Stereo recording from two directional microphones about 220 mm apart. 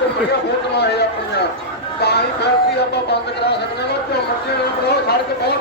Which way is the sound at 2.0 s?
50° left (ahead or behind).